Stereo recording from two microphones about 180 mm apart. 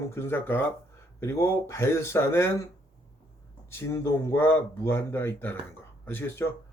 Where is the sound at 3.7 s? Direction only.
15° left (ahead or behind).